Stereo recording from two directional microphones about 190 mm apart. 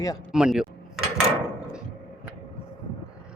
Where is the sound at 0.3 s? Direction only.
5° right (ahead or behind).